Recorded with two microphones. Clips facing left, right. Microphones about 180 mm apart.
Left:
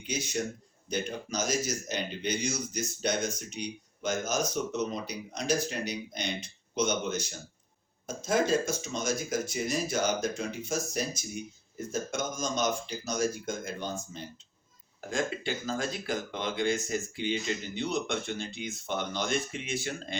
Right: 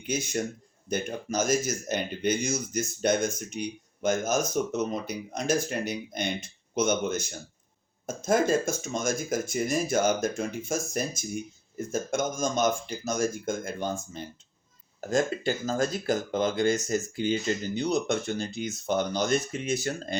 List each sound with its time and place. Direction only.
0.0 s speech: 50° right (ahead or behind)